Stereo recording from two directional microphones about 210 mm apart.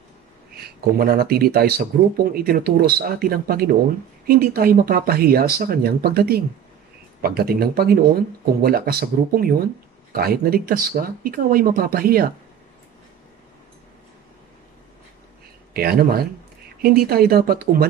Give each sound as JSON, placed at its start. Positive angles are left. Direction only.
{"t": 0.6, "sound": "speech", "side_deg": -45}
{"t": 15.7, "sound": "speech", "side_deg": -45}